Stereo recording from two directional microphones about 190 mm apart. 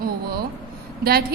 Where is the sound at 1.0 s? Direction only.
55° right (ahead or behind).